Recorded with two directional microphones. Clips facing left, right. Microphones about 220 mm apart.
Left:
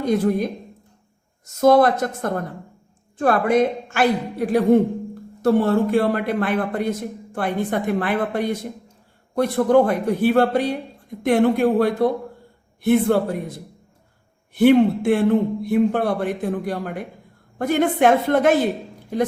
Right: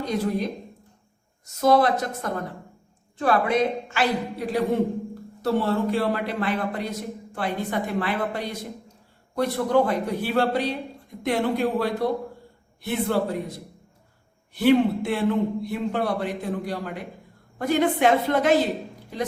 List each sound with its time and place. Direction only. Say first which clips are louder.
0.0 s a man's voice: left 6 dB; 50° left (ahead or behind)
1.6 s a man's voice: left 5 dB; 50° left (ahead or behind)
14.5 s a man's voice: left 5 dB; 50° left (ahead or behind)